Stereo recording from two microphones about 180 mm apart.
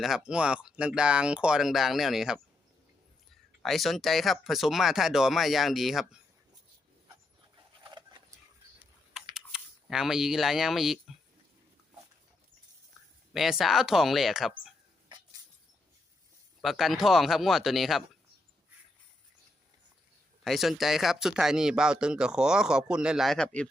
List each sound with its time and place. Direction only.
0.0 s speech: 5° right (ahead or behind)
3.6 s speech: centre (ahead or behind)
7.9 s a sound: 25° right (ahead or behind)
9.3 s speech: 5° right (ahead or behind)
13.3 s speech: centre (ahead or behind)
16.6 s speech: centre (ahead or behind)
20.4 s speech: centre (ahead or behind)